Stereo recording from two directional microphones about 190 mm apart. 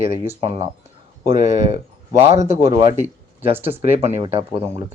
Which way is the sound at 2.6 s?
25° right (ahead or behind).